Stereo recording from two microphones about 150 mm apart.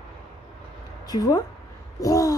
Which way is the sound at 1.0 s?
25° left (ahead or behind).